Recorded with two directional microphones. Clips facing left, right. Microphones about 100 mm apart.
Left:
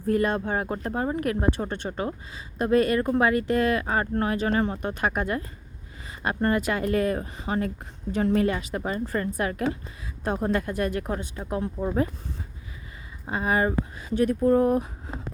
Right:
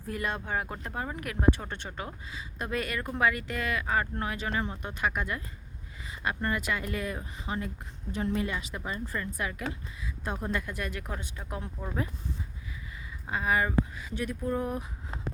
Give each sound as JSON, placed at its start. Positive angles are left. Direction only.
{"t": 0.1, "sound": "speech", "side_deg": 40}
{"t": 8.1, "sound": "a woman's voice", "side_deg": 70}
{"t": 13.2, "sound": "speech", "side_deg": 35}